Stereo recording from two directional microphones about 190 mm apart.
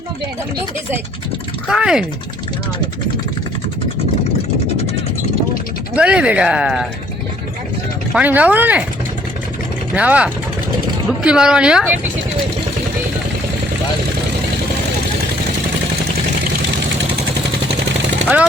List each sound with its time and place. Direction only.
1.6 s speech: 5° right (ahead or behind)
5.9 s speech: 5° right (ahead or behind)
8.1 s speech: 10° right (ahead or behind)
9.9 s speech: 5° right (ahead or behind)